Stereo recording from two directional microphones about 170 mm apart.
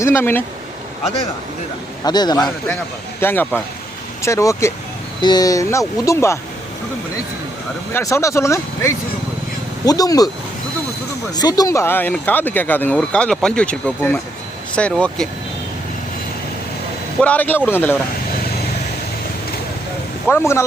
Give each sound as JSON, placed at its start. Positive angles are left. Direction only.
{"t": 0.0, "sound": "speech", "side_deg": 15}
{"t": 2.0, "sound": "speech", "side_deg": 25}
{"t": 3.2, "sound": "speech", "side_deg": 15}
{"t": 7.9, "sound": "speech", "side_deg": 15}
{"t": 11.3, "sound": "speech", "side_deg": 25}
{"t": 17.2, "sound": "speech", "side_deg": 10}
{"t": 20.3, "sound": "speech", "side_deg": 15}